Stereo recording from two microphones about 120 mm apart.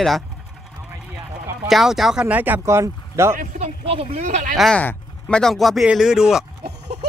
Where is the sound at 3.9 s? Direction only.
70° right (ahead or behind).